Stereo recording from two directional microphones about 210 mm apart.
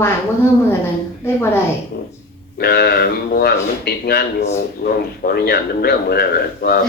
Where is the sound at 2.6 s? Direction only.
50° left (ahead or behind).